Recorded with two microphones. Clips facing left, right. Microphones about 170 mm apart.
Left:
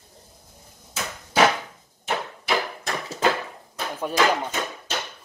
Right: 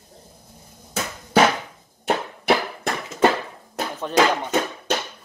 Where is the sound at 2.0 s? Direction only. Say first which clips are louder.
Right 5 dB; 60° right (ahead or behind).